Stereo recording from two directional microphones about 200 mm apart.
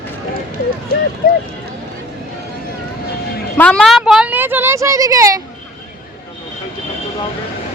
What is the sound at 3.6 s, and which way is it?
A woman's voice, 5° left (ahead or behind).